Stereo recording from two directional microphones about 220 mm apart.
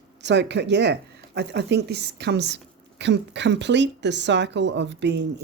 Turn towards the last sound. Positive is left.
turn(degrees=-50)  # may be behind; listen again after turning